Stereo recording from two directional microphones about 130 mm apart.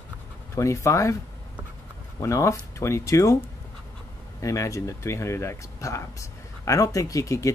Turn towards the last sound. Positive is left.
turn(degrees=25)  # may be behind; listen again after turning